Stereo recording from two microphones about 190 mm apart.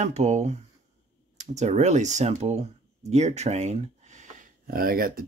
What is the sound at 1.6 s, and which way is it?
Speech, 35° right (ahead or behind).